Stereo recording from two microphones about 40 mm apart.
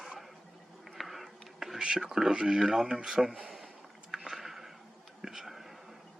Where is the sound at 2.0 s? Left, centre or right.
Centre.